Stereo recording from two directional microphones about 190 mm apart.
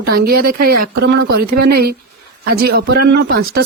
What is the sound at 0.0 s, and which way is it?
Speech, 55° right (ahead or behind).